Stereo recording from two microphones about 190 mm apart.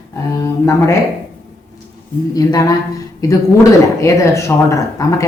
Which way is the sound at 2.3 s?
20° left (ahead or behind).